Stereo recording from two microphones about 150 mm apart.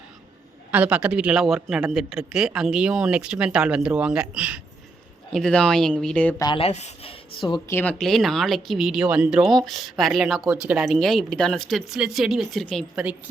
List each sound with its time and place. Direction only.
0.7 s a man's voice: 10° right (ahead or behind)
5.3 s a man's voice: 5° left (ahead or behind)
6.6 s speech: 45° left (ahead or behind)
7.7 s speech: 15° left (ahead or behind)
7.9 s a man's voice: centre (ahead or behind)